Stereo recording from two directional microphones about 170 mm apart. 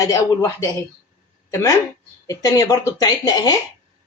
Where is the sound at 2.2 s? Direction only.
20° left (ahead or behind).